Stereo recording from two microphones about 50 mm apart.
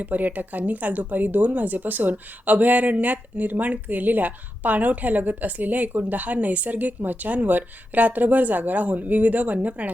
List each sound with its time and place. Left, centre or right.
0.0 s speech: right